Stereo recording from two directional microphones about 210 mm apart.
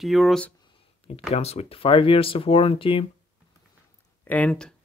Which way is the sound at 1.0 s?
30° left (ahead or behind).